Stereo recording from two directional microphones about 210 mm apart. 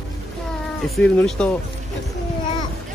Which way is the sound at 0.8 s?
Centre (ahead or behind).